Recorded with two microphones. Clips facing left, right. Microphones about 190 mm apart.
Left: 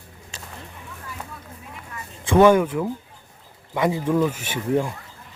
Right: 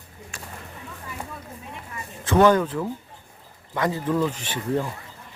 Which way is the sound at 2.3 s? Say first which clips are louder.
Left 3 dB; 10° left (ahead or behind).